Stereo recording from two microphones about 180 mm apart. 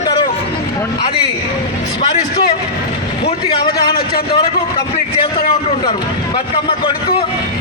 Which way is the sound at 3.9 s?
60° left (ahead or behind).